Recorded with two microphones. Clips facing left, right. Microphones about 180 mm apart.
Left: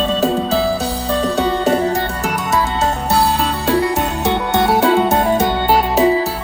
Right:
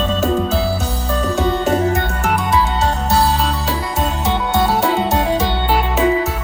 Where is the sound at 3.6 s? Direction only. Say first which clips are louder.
Left 5 dB; 65° left (ahead or behind); by 6.3 s 35° left (ahead or behind).